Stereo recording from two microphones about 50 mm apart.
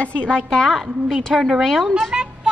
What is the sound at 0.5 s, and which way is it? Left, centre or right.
Speech, centre.